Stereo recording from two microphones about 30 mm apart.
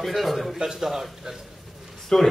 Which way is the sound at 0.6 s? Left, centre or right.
Centre.